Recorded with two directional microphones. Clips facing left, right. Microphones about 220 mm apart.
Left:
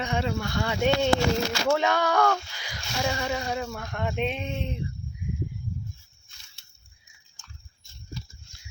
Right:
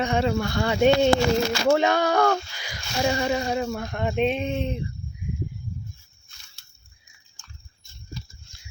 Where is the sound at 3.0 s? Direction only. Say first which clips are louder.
Right 5 dB; 30° right (ahead or behind).